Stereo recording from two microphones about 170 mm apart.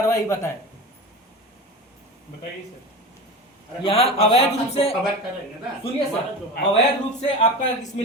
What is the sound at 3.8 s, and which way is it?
A man's voice, 35° left (ahead or behind).